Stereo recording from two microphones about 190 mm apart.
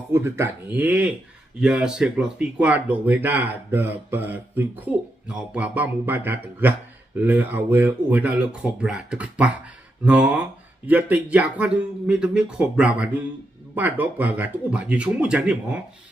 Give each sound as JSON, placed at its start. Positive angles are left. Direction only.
{"t": 0.1, "sound": "speech", "side_deg": -15}